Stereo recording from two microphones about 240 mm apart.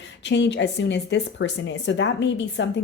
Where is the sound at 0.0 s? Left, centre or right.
Left.